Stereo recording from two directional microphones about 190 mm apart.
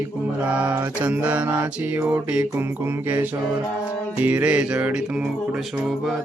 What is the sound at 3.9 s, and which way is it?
Music, 5° right (ahead or behind).